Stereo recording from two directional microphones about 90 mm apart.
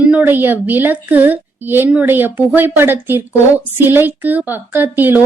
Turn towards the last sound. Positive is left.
turn(degrees=-20)  # may be behind; listen again after turning